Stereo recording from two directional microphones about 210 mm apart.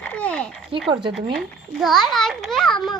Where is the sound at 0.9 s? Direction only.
25° right (ahead or behind).